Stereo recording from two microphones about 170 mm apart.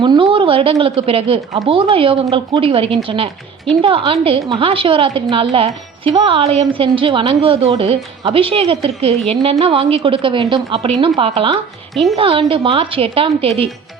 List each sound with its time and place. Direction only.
0.0 s a woman's voice: 30° right (ahead or behind)